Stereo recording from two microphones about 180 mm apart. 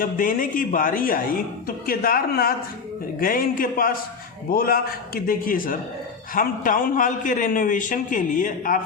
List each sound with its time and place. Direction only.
0.0 s a man's voice: 50° left (ahead or behind)